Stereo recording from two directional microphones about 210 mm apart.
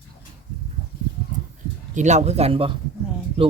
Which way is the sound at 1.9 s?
35° right (ahead or behind).